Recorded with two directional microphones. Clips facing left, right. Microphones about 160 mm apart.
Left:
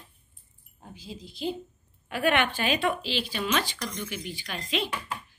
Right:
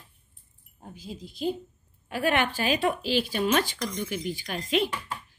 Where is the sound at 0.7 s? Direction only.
45° right (ahead or behind).